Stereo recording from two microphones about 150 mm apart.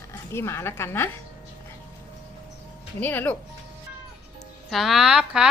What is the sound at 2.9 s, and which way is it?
Speech, 10° left (ahead or behind).